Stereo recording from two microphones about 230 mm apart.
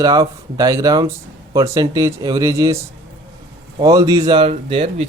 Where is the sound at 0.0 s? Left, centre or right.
Centre.